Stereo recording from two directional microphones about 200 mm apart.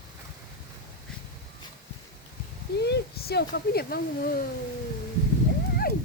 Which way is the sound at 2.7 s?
55° left (ahead or behind).